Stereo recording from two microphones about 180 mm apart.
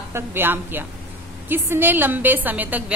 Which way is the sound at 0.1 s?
10° right (ahead or behind).